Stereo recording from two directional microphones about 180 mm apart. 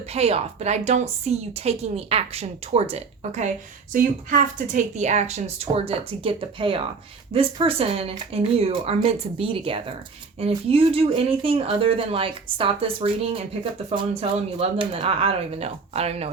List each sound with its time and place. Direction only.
0.1 s a woman's voice: 35° right (ahead or behind)